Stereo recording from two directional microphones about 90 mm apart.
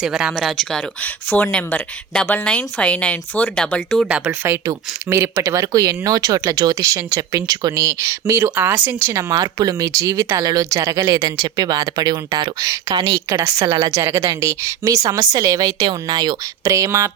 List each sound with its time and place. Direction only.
0.0 s speech: 5° right (ahead or behind)
1.3 s speech: 20° left (ahead or behind)
4.3 s speech: 25° right (ahead or behind)
9.3 s speech: 50° right (ahead or behind)
13.3 s speech: 35° right (ahead or behind)